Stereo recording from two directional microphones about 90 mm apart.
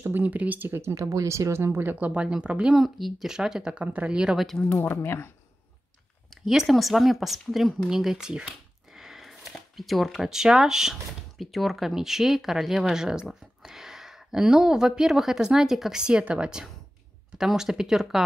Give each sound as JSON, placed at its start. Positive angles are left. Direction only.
{"t": 0.0, "sound": "speech", "side_deg": -20}
{"t": 4.5, "sound": "speech", "side_deg": 10}
{"t": 4.7, "sound": "speech", "side_deg": 25}
{"t": 6.3, "sound": "a sound", "side_deg": 0}
{"t": 6.7, "sound": "speech", "side_deg": 0}